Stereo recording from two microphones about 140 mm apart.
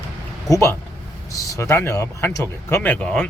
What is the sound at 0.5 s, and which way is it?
Speech, 20° left (ahead or behind).